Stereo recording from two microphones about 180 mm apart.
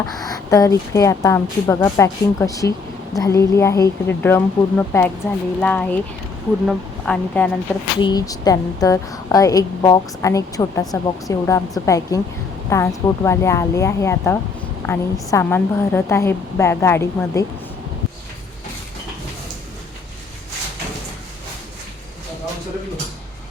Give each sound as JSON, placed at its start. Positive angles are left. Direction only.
{"t": 0.3, "sound": "a woman's voice", "side_deg": 15}
{"t": 8.0, "sound": "a woman's voice", "side_deg": 20}